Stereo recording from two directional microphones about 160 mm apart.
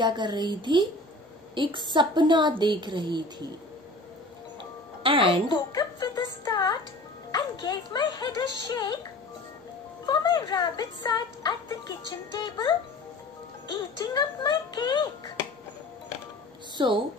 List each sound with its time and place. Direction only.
0.0 s a woman's voice: 30° right (ahead or behind)
5.0 s a woman's voice: 35° right (ahead or behind)
5.5 s speech: 25° left (ahead or behind)
10.0 s speech: 25° left (ahead or behind)
16.7 s speech: 30° right (ahead or behind)